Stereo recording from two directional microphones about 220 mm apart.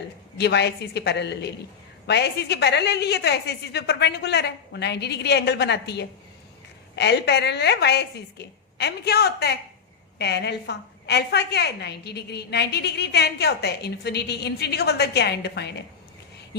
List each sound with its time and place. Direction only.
0.3 s a woman's voice: 50° left (ahead or behind)